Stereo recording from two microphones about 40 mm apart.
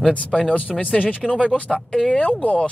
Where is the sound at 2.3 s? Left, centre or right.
Left.